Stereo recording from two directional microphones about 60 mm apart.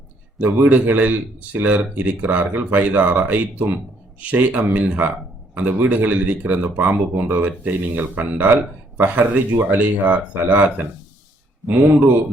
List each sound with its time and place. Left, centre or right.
0.3 s speech: right